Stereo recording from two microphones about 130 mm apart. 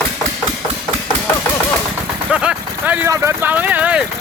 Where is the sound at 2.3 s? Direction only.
10° right (ahead or behind).